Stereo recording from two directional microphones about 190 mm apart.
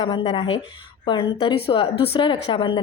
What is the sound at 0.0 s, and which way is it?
A woman's voice, 25° left (ahead or behind).